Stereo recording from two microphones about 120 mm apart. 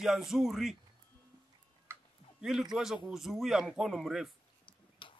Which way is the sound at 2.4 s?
5° right (ahead or behind).